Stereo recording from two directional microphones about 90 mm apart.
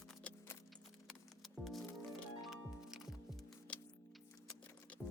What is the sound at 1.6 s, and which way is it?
Music, centre (ahead or behind).